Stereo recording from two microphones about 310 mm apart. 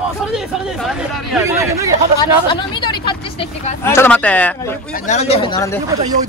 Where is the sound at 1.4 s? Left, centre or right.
Centre.